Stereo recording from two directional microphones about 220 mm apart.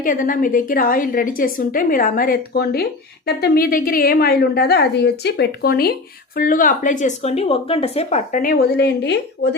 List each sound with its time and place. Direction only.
0.0 s a woman's voice: 40° left (ahead or behind)